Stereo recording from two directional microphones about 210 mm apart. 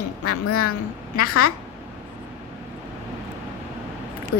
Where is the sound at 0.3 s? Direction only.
90° left.